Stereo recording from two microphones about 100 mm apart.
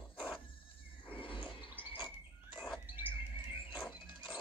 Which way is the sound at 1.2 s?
60° left (ahead or behind).